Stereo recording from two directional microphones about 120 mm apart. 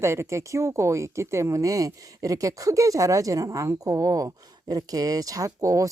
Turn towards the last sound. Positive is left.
turn(degrees=-25)  # may be behind; listen again after turning